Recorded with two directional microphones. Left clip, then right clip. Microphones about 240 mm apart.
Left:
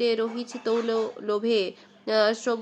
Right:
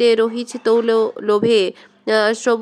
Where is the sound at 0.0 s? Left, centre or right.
Right.